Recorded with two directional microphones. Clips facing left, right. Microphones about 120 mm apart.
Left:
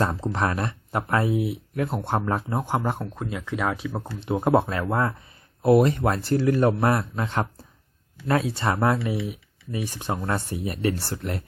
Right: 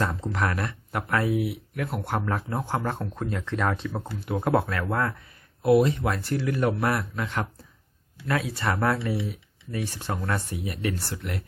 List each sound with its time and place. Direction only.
0.0 s speech: 30° left (ahead or behind); by 4.1 s 10° left (ahead or behind)
4.2 s speech: 25° left (ahead or behind)
6.0 s speech: 35° left (ahead or behind)